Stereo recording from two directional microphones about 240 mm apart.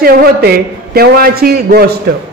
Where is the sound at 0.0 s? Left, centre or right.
Right.